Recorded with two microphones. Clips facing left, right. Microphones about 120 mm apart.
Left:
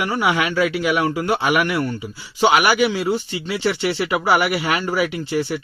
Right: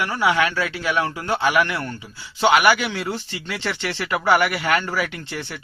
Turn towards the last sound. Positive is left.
turn(degrees=10)  # may be behind; listen again after turning